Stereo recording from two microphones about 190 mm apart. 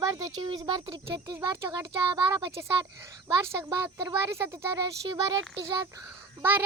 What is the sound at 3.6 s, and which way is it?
A child's voice, 10° right (ahead or behind).